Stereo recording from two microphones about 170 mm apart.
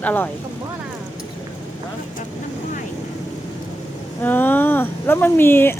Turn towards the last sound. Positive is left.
turn(degrees=15)  # may be behind; listen again after turning